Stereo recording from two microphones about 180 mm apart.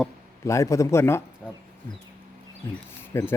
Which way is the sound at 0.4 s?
15° left (ahead or behind).